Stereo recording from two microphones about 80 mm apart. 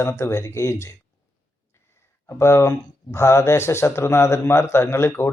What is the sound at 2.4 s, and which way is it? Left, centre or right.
Speech, left.